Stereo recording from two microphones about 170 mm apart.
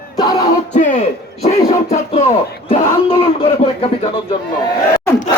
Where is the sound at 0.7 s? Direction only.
45° left (ahead or behind).